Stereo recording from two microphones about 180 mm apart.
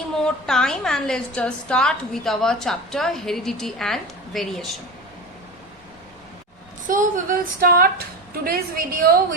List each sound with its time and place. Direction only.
0.2 s a woman's voice: 5° left (ahead or behind)
6.8 s a woman's voice: 50° right (ahead or behind)